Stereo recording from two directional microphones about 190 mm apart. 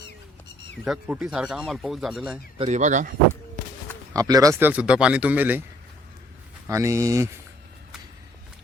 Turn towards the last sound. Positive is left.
turn(degrees=-15)  # may be behind; listen again after turning